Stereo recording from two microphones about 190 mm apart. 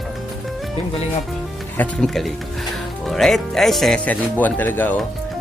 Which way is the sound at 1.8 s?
5° left (ahead or behind).